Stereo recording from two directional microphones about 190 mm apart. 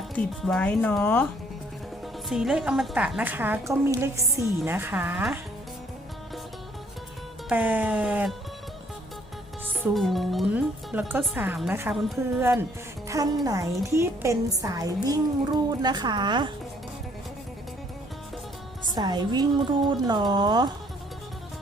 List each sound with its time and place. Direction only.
0.2 s speech: 5° left (ahead or behind)
2.3 s a woman's voice: centre (ahead or behind)
7.5 s speech: 10° right (ahead or behind)
9.9 s a woman's voice: centre (ahead or behind); by 16.5 s 25° right (ahead or behind)
18.9 s a woman's voice: 20° right (ahead or behind)